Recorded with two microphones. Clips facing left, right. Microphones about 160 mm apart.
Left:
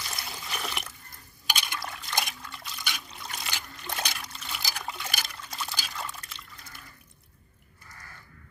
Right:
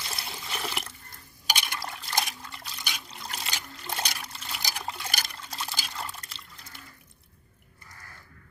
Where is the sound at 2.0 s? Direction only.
30° right (ahead or behind).